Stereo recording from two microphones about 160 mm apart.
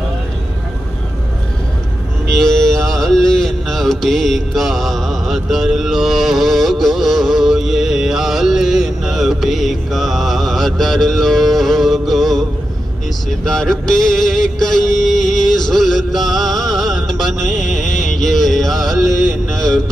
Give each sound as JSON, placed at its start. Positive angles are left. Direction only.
{"t": 2.3, "sound": "mantra", "side_deg": 5}
{"t": 13.5, "sound": "a sound", "side_deg": 5}
{"t": 16.3, "sound": "music", "side_deg": 0}
{"t": 17.5, "sound": "music", "side_deg": 50}
{"t": 18.2, "sound": "music", "side_deg": 0}